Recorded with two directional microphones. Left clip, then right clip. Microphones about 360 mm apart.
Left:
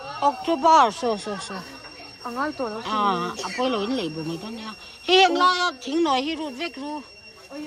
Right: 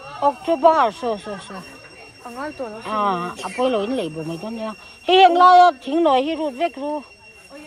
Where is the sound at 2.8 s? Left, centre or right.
Centre.